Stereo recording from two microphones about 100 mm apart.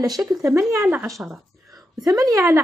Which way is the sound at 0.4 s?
30° right (ahead or behind).